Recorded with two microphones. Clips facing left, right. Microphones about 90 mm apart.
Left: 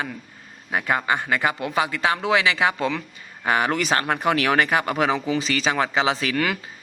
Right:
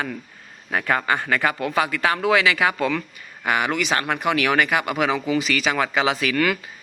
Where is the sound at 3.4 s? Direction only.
35° left (ahead or behind).